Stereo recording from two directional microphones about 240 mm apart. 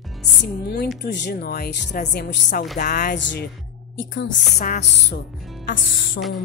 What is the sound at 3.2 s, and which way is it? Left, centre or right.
Speech, left.